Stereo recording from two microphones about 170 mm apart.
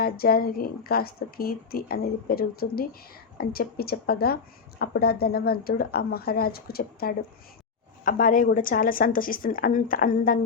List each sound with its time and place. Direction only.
0.0 s a woman's voice: 60° left (ahead or behind)
8.0 s a woman's voice: 50° left (ahead or behind)